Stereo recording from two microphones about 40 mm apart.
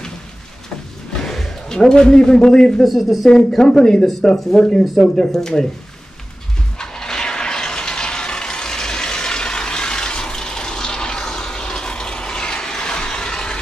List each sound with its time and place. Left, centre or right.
1.2 s speech: centre
2.8 s speech: centre
3.3 s speech: centre
6.8 s a sound: centre